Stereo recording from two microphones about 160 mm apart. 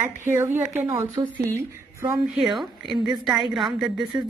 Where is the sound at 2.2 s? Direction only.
Centre (ahead or behind).